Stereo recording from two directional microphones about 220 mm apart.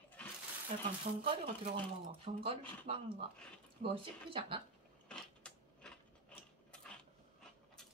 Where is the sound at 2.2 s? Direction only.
25° right (ahead or behind).